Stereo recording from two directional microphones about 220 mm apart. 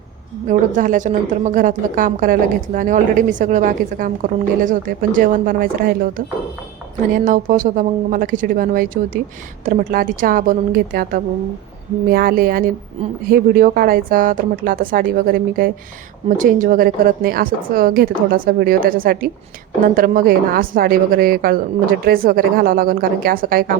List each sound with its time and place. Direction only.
0.4 s a woman's voice: 35° right (ahead or behind)
7.3 s a woman's voice: 35° right (ahead or behind)